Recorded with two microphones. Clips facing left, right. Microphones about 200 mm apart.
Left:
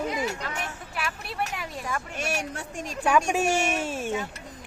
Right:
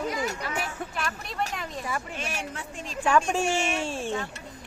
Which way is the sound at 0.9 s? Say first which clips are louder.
Left 2 dB; 5° left (ahead or behind).